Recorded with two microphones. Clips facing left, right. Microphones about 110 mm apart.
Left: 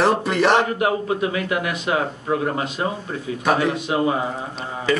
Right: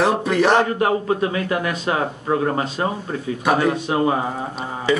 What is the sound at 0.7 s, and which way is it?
Speech, 35° right (ahead or behind).